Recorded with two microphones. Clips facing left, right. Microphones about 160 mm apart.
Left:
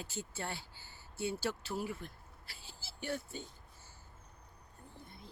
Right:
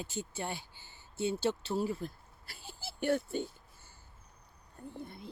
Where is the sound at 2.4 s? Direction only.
50° right (ahead or behind).